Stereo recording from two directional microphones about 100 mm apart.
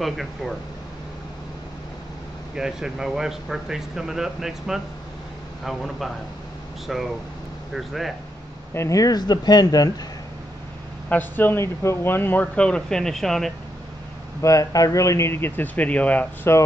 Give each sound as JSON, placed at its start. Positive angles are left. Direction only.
{"t": 2.5, "sound": "speech", "side_deg": -5}
{"t": 8.7, "sound": "speech", "side_deg": 35}
{"t": 11.1, "sound": "speech", "side_deg": 20}
{"t": 14.4, "sound": "speech", "side_deg": 35}